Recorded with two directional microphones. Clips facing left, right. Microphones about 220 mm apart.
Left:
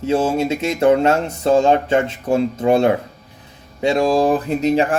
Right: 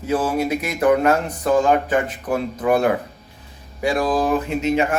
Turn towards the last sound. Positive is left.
turn(degrees=35)  # may be behind; listen again after turning